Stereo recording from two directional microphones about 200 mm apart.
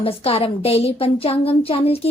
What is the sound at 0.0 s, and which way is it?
A woman's voice, 30° left (ahead or behind).